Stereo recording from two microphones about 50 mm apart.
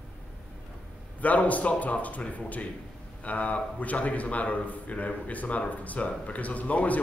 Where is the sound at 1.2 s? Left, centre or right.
Left.